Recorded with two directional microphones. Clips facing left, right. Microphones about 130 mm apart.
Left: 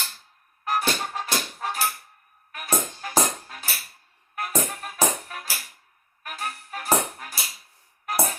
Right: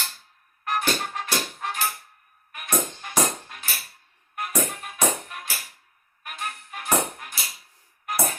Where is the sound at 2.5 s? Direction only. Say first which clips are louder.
Even; 45° left (ahead or behind).